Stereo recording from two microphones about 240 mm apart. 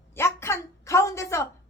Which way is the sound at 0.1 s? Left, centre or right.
Centre.